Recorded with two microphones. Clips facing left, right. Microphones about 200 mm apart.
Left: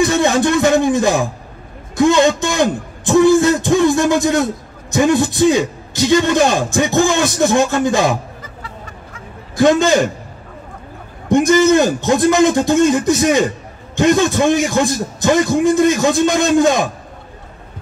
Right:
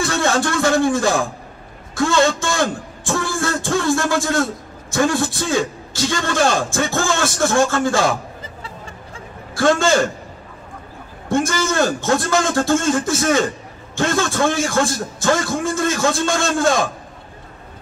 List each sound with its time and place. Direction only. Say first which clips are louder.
0.0 s a man's voice: left 5 dB; 20° left (ahead or behind)
8.6 s a sound: left 1 dB; 30° right (ahead or behind)
9.6 s a man's voice: left 4 dB; 20° left (ahead or behind)
11.2 s a man's voice: left 8 dB; 20° left (ahead or behind)